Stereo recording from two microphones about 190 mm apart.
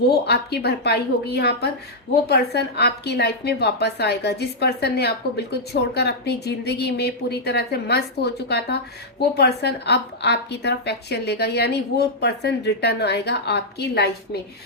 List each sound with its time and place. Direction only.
0.0 s a woman's voice: 60° left (ahead or behind)